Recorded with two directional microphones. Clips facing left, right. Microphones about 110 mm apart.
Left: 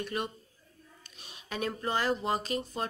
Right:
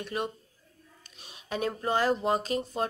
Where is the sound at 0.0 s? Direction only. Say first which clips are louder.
Right 2 dB; 25° right (ahead or behind).